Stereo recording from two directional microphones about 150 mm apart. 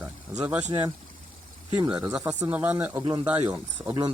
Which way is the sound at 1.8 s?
30° right (ahead or behind).